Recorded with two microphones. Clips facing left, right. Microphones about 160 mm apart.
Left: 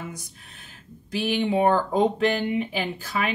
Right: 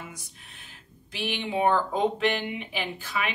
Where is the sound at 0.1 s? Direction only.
40° left (ahead or behind).